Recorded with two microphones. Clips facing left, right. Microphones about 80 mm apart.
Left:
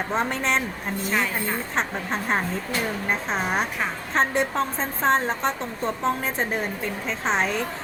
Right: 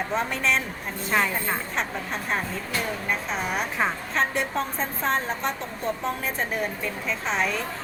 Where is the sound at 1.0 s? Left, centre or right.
Right.